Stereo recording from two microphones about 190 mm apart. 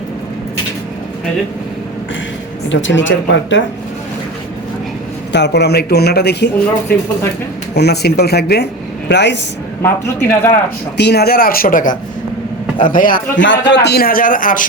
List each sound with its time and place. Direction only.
2.6 s speech: 75° left (ahead or behind)
5.3 s a man's voice: 65° left (ahead or behind)
7.8 s a man's voice: 60° left (ahead or behind)
9.8 s speech: 10° left (ahead or behind)
10.9 s a man's voice: 60° left (ahead or behind)
13.3 s a man's voice: 75° left (ahead or behind); by 14.7 s 45° left (ahead or behind)